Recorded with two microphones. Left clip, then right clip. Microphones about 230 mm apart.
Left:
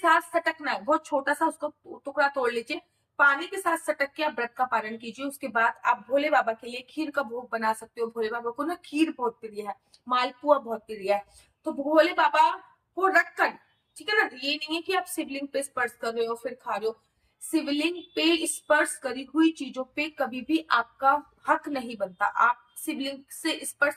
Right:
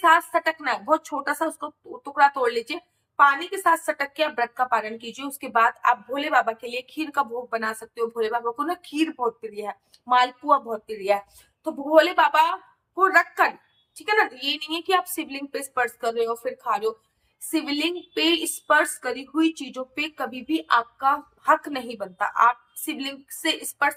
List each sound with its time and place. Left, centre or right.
0.0 s a woman's voice: centre